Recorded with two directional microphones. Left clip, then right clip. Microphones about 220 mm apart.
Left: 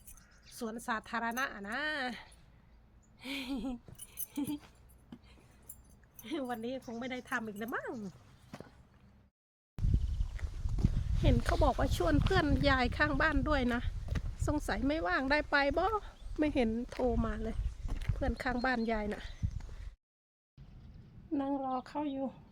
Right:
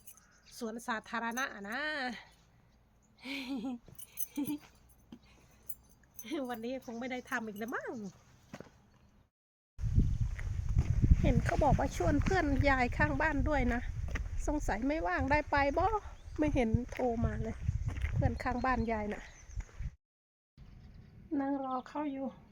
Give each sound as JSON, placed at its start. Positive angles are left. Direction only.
{"t": 0.5, "sound": "speech", "side_deg": 15}
{"t": 5.1, "sound": "a sound", "side_deg": 5}
{"t": 6.1, "sound": "speech", "side_deg": 0}
{"t": 10.3, "sound": "horse", "side_deg": 0}
{"t": 11.2, "sound": "speech", "side_deg": 10}
{"t": 17.8, "sound": "speech", "side_deg": 0}
{"t": 21.3, "sound": "speech", "side_deg": -10}